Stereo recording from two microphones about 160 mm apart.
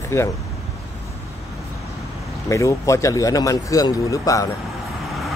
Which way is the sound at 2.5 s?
20° left (ahead or behind).